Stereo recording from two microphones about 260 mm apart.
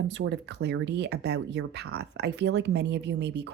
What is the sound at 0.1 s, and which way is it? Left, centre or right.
Speech, right.